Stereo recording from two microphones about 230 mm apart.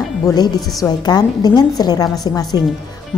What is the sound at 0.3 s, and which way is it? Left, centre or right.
A woman's voice, centre.